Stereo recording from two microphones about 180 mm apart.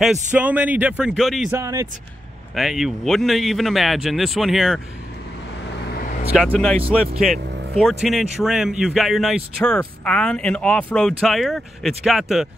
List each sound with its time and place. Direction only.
0.0 s speech: 5° right (ahead or behind)
1.5 s speech: 15° right (ahead or behind)
2.5 s speech: centre (ahead or behind)
6.3 s speech: 5° left (ahead or behind)